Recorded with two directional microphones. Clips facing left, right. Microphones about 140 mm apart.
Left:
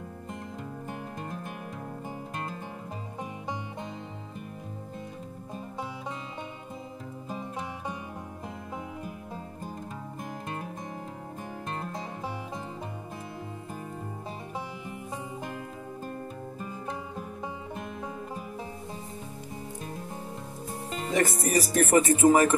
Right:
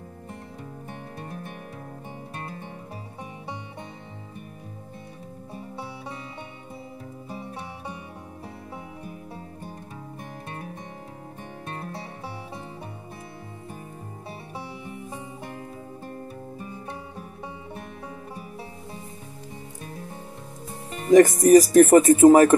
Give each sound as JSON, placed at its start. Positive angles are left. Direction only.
{"t": 21.1, "sound": "speech", "side_deg": -40}